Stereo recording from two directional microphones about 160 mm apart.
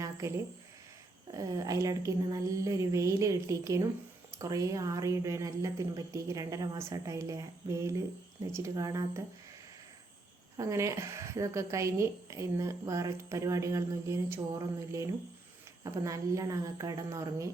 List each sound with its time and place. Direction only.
0.0 s a sound: 20° right (ahead or behind)
1.3 s a woman's voice: 20° right (ahead or behind)
10.6 s a woman's voice: 20° right (ahead or behind)